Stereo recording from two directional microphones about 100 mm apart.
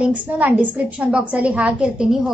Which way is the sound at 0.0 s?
15° right (ahead or behind).